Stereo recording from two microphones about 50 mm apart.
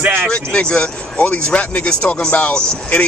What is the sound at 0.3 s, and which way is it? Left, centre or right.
Speech, left.